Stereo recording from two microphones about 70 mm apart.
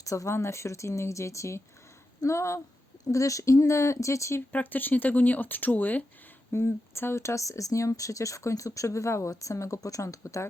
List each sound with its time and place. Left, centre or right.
0.0 s speech: left
0.3 s speech: left
4.5 s speech: left
6.5 s speech: left